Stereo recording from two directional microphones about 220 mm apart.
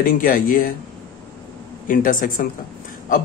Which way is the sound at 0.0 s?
40° left (ahead or behind).